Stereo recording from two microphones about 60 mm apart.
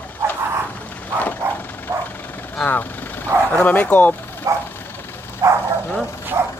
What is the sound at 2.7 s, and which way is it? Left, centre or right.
Vehicle, left.